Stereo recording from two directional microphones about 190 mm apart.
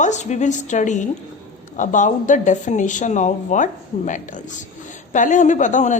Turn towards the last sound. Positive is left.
turn(degrees=40)  # may be behind; listen again after turning